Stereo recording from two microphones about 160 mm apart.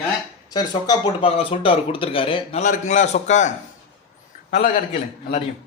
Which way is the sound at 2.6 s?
50° left (ahead or behind).